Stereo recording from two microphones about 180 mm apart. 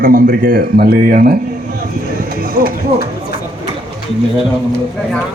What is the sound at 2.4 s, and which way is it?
Speech, 55° right (ahead or behind).